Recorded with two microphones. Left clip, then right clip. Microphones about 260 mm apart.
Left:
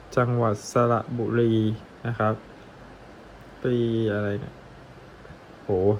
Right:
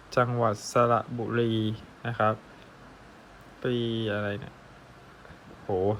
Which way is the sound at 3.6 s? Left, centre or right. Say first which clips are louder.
Left 5 dB; centre.